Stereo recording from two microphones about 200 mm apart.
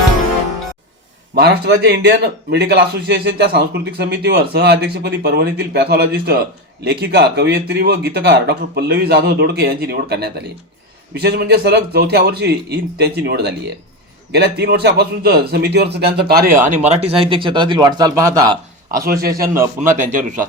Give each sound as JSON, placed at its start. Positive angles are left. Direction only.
{"t": 1.4, "sound": "a man's voice", "side_deg": -55}
{"t": 16.6, "sound": "speech", "side_deg": -35}
{"t": 19.0, "sound": "a man's voice", "side_deg": -50}